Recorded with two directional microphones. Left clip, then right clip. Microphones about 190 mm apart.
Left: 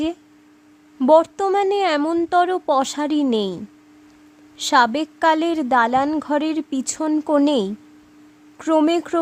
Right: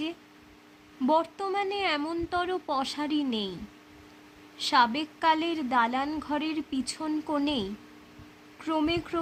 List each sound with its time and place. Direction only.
1.0 s a woman's voice: 70° left (ahead or behind)